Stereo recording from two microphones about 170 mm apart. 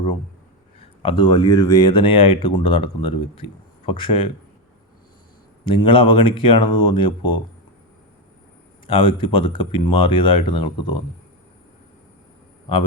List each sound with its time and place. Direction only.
0.8 s speech: 30° left (ahead or behind)
5.7 s speech: 30° left (ahead or behind)
8.9 s speech: 30° left (ahead or behind)